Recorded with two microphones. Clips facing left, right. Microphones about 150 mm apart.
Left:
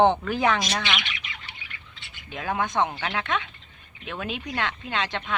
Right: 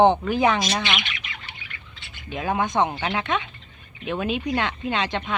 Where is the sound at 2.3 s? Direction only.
15° right (ahead or behind).